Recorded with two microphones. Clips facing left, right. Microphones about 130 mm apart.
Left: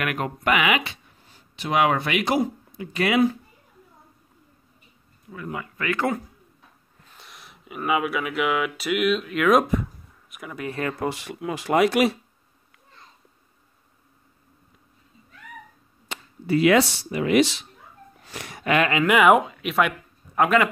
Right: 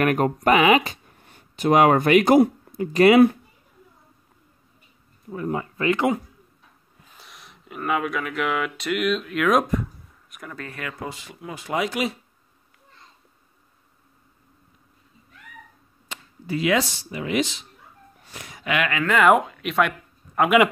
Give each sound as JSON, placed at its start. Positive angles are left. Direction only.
{"t": 0.0, "sound": "speech", "side_deg": -40}
{"t": 1.1, "sound": "speech", "side_deg": -60}
{"t": 5.3, "sound": "speech", "side_deg": -35}
{"t": 7.1, "sound": "speech", "side_deg": 0}
{"t": 10.7, "sound": "speech", "side_deg": 35}
{"t": 11.0, "sound": "speech", "side_deg": 70}
{"t": 16.1, "sound": "speech", "side_deg": 60}
{"t": 18.2, "sound": "a sound", "side_deg": 70}
{"t": 18.6, "sound": "speech", "side_deg": 40}
{"t": 18.9, "sound": "speech", "side_deg": 15}